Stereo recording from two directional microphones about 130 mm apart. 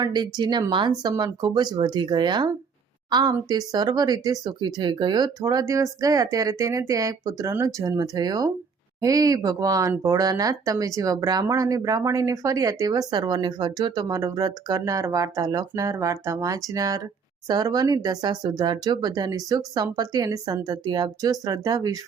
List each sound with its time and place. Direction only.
0.0 s speech: 35° right (ahead or behind)